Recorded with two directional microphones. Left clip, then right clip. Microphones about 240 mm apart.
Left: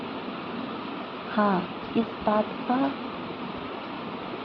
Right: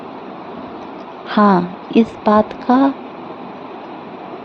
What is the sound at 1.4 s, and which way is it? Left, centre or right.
A woman's voice, right.